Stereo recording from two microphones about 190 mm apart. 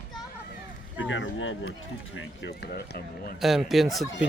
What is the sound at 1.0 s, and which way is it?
Speech, 85° left.